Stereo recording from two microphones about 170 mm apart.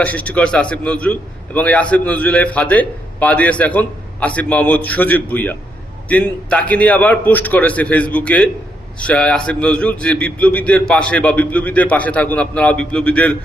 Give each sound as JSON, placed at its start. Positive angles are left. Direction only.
{"t": 0.0, "sound": "a man's voice", "side_deg": 10}